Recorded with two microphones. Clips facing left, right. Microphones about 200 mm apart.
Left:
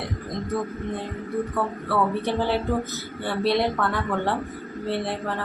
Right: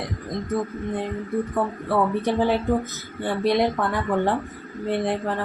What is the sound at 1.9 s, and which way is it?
Speech, 15° right (ahead or behind).